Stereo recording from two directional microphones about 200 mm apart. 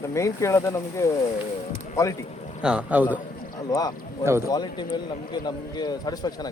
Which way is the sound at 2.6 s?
5° right (ahead or behind).